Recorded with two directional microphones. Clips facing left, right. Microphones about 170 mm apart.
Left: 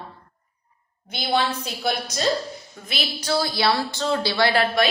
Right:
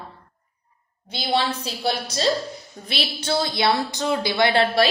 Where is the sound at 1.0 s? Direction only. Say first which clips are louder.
Even; 30° right (ahead or behind).